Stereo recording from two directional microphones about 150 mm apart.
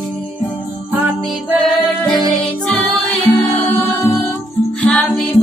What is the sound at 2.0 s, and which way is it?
Music, 5° left (ahead or behind).